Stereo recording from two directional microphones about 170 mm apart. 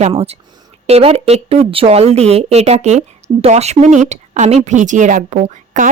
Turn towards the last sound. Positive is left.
turn(degrees=-45)  # may be behind; listen again after turning